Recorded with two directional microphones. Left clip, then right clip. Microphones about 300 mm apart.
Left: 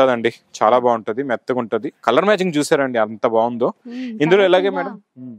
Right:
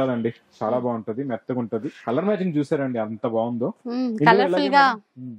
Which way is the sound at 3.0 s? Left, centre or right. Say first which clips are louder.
Left 8 dB; left.